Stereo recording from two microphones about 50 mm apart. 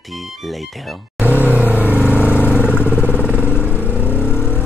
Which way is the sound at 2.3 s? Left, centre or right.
Left.